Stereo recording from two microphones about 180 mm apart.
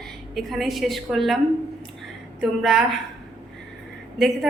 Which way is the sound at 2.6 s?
Centre (ahead or behind).